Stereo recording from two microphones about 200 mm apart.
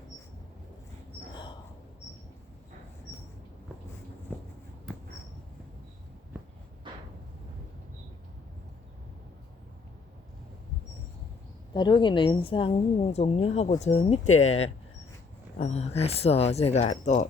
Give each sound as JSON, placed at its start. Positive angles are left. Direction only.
{"t": 11.7, "sound": "a woman's voice", "side_deg": 25}